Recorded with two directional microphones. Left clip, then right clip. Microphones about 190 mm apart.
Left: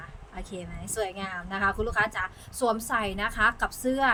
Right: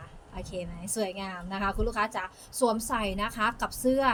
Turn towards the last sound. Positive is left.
turn(degrees=20)  # may be behind; listen again after turning